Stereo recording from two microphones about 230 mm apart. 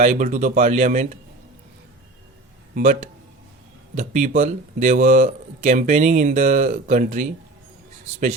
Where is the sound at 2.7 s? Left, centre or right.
Right.